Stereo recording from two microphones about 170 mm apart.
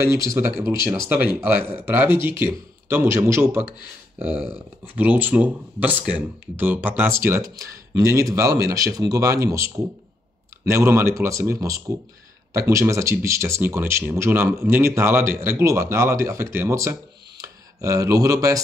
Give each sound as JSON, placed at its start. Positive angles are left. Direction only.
{"t": 0.3, "sound": "speech", "side_deg": -15}